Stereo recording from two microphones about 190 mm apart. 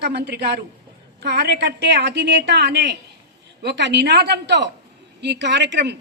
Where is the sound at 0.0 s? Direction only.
60° right (ahead or behind).